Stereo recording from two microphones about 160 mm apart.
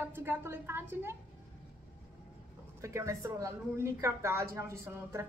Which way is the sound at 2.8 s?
20° right (ahead or behind).